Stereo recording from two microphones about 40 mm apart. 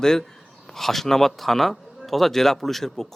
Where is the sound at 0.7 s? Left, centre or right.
Centre.